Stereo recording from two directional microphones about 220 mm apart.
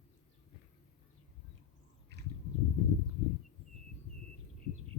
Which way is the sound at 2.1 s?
50° right (ahead or behind).